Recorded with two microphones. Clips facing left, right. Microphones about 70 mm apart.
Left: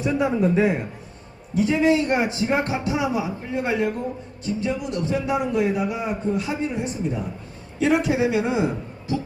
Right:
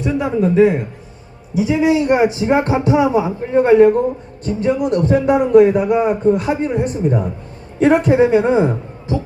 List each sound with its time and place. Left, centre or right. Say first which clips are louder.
0.0 s a man's voice: right 4 dB; centre; by 9.1 s right